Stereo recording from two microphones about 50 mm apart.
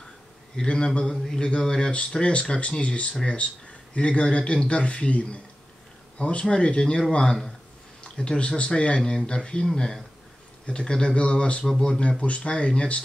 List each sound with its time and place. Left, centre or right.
0.6 s speech: centre